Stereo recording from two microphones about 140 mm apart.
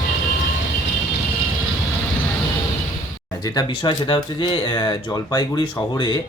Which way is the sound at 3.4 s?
35° left (ahead or behind).